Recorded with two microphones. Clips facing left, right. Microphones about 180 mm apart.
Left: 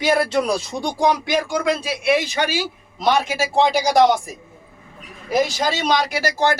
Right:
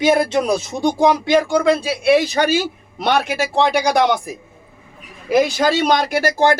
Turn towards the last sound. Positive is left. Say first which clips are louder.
# right 4 dB
turn(degrees=-50)  # may be behind; listen again after turning